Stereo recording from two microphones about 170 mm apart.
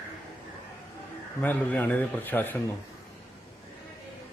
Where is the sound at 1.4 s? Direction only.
10° left (ahead or behind).